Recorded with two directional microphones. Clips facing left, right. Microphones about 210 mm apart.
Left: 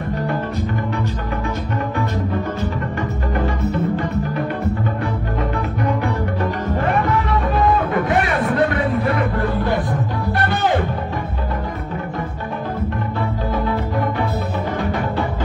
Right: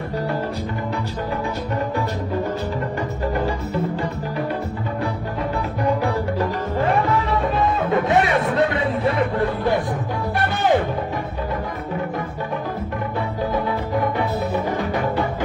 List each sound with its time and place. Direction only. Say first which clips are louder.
7.6 s music: left 3 dB; 25° right (ahead or behind)
7.9 s music: right 1 dB; centre (ahead or behind)
8.4 s a sound: left 1 dB; 25° right (ahead or behind)